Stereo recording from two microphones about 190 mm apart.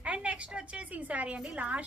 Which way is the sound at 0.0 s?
5° right (ahead or behind).